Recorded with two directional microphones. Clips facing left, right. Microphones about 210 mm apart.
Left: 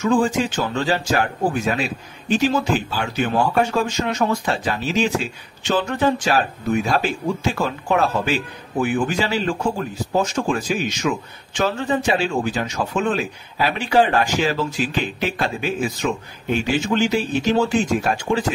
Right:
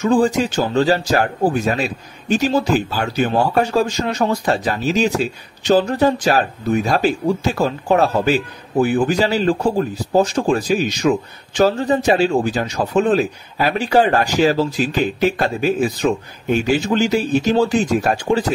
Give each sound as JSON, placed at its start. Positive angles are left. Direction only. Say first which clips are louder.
{"t": 0.0, "sound": "speech", "louder": "right 3 dB", "side_deg": -35}